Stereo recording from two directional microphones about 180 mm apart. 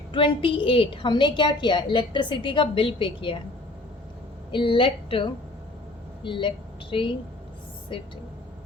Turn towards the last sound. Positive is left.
turn(degrees=30)  # may be behind; listen again after turning